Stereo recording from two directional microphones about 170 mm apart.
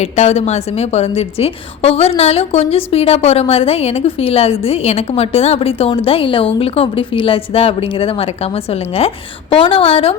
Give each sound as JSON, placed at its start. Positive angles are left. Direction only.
{"t": 0.0, "sound": "a woman's voice", "side_deg": 40}